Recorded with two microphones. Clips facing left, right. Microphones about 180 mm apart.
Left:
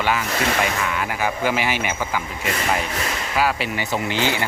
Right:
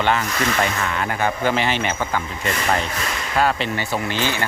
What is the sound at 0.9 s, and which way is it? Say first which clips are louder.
Speech: right 1 dB; 10° left (ahead or behind).